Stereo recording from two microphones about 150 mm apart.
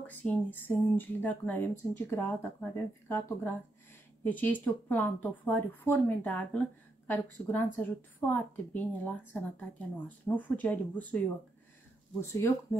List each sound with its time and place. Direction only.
0.0 s speech: 10° left (ahead or behind)